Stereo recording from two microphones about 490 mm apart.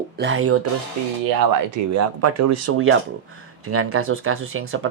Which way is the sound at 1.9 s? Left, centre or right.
Right.